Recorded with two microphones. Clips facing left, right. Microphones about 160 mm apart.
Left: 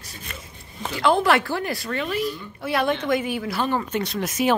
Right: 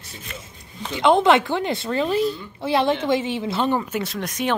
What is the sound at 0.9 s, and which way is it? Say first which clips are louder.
A woman's voice: right 3 dB; 20° right (ahead or behind).